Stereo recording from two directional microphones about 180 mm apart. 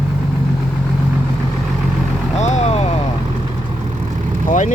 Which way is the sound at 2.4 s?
40° left (ahead or behind).